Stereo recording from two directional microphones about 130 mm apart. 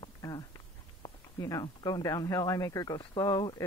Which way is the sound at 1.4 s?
25° left (ahead or behind).